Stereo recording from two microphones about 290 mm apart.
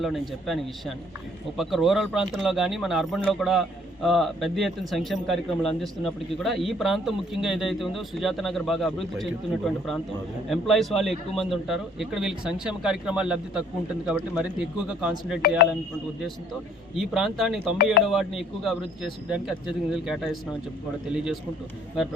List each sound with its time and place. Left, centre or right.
0.0 s speech: centre
14.8 s speech: centre
15.4 s speech: left
17.0 s speech: centre